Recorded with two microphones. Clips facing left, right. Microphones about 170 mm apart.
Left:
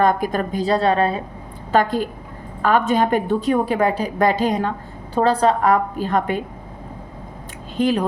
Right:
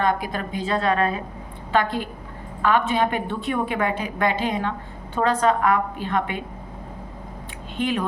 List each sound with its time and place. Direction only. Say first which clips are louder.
0.0 s a woman's voice: left 5 dB; 45° left (ahead or behind)
7.8 s a woman's voice: left 6 dB; 35° left (ahead or behind)